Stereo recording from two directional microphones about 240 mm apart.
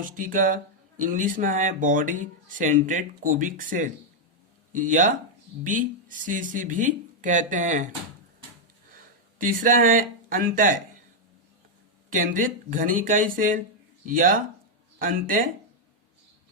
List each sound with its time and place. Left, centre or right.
0.0 s speech: right
9.4 s speech: right
12.1 s speech: right